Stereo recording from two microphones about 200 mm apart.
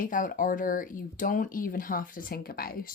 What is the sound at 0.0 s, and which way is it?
Speech, 45° left (ahead or behind).